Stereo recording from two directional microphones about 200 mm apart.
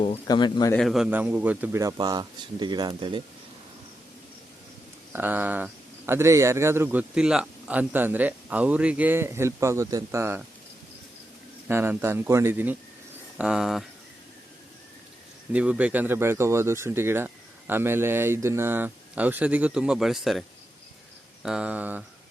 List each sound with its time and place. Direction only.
0.0 s speech: 25° left (ahead or behind)
0.7 s a man's voice: centre (ahead or behind); by 3.2 s 25° right (ahead or behind)
5.1 s a man's voice: 10° right (ahead or behind)
11.7 s a man's voice: 10° right (ahead or behind)
15.5 s a man's voice: 5° right (ahead or behind)
21.4 s a man's voice: 5° right (ahead or behind)